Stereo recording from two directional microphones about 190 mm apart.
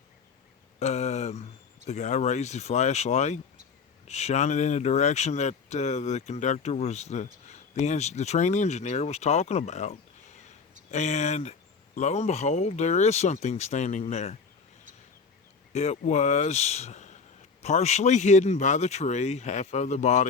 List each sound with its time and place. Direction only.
0.8 s mantra: 35° left (ahead or behind)
1.9 s speech: 35° left (ahead or behind)
15.7 s speech: 35° left (ahead or behind)